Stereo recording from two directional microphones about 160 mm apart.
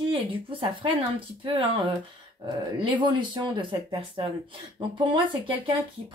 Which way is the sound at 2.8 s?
30° right (ahead or behind).